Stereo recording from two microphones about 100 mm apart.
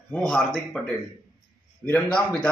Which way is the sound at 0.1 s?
5° left (ahead or behind).